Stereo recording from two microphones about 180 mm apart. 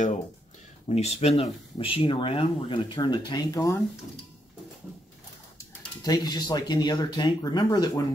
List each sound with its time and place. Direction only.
0.8 s speech: 35° left (ahead or behind); by 3.8 s 20° left (ahead or behind)
6.0 s speech: 20° left (ahead or behind)